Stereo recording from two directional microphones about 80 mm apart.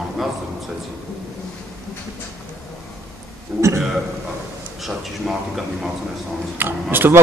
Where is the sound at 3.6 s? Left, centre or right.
Right.